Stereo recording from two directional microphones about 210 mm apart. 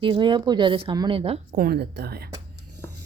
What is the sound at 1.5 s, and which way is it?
Speech, 45° right (ahead or behind).